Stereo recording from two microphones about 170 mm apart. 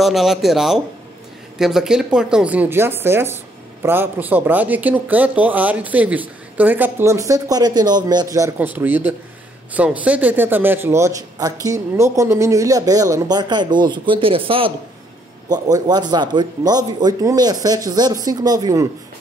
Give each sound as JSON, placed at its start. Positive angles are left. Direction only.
{"t": 0.0, "sound": "a man's voice", "side_deg": 0}